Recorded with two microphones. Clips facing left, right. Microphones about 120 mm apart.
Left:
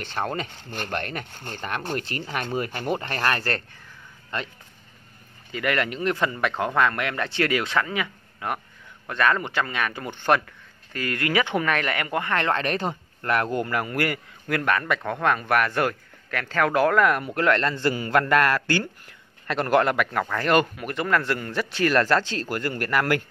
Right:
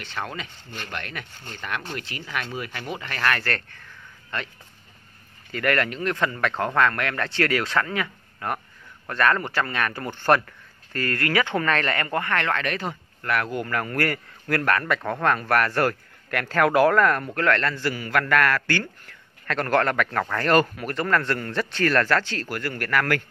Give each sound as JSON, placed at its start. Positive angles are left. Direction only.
{"t": 0.0, "sound": "speech", "side_deg": 40}
{"t": 5.5, "sound": "a man's voice", "side_deg": 10}
{"t": 13.7, "sound": "speech", "side_deg": 10}
{"t": 17.0, "sound": "a man's voice", "side_deg": 10}